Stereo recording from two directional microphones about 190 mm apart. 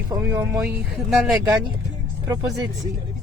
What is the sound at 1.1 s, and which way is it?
Speech, centre (ahead or behind).